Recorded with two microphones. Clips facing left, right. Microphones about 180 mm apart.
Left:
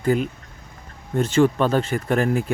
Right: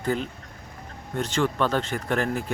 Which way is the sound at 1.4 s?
15° left (ahead or behind).